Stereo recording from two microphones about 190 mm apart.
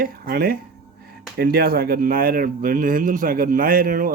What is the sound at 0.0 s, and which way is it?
A man's voice, 50° right (ahead or behind).